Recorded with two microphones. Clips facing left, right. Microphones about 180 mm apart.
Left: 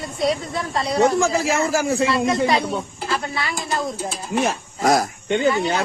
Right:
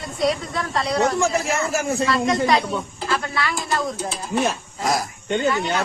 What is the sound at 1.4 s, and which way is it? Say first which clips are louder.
Speech: left 3 dB; 90° left.